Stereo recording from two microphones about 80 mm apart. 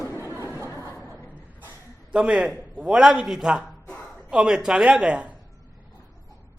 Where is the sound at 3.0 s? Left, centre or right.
Centre.